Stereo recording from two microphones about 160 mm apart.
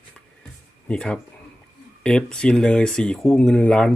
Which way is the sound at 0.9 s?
5° left (ahead or behind).